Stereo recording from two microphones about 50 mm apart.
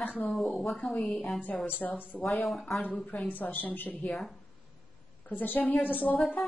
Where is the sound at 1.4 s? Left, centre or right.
Left.